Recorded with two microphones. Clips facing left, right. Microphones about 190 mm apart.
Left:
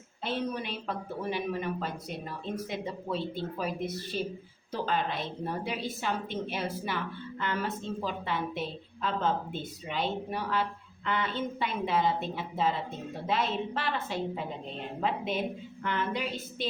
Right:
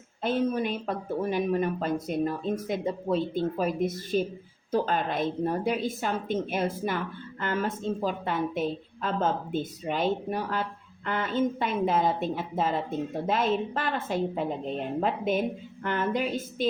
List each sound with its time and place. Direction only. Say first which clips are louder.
0.2 s a woman's voice: right 7 dB; 50° right (ahead or behind)